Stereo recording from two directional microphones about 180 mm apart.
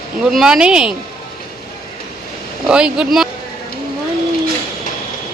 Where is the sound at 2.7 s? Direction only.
5° right (ahead or behind).